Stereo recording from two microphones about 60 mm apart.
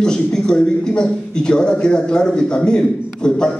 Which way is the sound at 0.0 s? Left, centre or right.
Centre.